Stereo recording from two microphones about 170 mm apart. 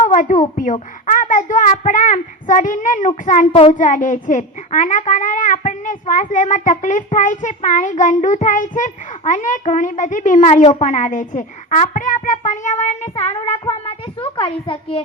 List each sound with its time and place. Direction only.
0.0 s a child's voice: 50° left (ahead or behind); by 15.0 s 30° left (ahead or behind)